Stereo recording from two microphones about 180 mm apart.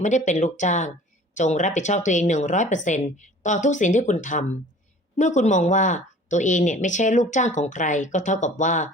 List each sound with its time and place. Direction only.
0.0 s speech: 40° left (ahead or behind)